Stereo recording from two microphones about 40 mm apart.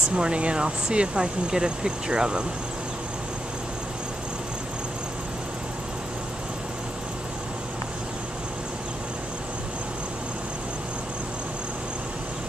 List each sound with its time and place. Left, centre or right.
0.1 s speech: right